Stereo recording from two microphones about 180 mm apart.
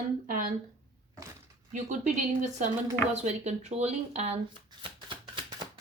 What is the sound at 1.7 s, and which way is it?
Speech, 45° right (ahead or behind).